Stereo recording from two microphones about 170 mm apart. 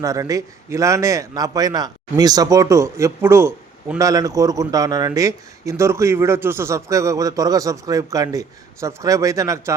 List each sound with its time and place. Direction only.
0.0 s a man's voice: 20° right (ahead or behind)